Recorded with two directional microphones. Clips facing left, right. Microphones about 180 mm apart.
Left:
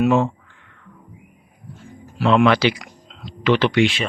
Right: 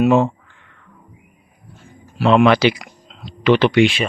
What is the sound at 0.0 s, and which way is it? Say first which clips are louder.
Speech: right 3 dB; 15° right (ahead or behind).